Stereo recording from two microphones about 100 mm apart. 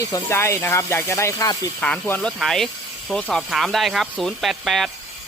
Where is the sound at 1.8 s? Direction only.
15° left (ahead or behind).